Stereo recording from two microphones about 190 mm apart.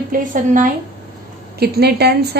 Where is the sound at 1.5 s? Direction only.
55° right (ahead or behind).